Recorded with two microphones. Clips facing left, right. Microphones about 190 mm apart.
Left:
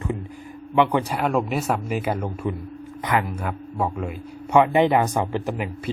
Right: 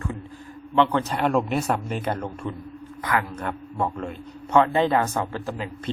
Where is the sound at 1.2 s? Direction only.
Centre (ahead or behind).